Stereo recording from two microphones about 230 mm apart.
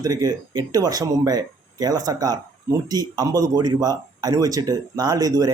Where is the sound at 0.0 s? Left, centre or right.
Centre.